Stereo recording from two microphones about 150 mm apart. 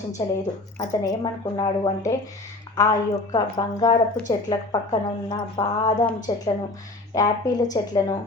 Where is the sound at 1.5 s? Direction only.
30° left (ahead or behind).